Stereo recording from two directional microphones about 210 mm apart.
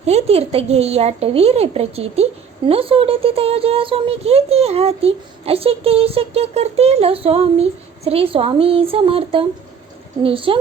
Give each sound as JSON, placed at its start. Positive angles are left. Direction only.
{"t": 0.0, "sound": "speech", "side_deg": -30}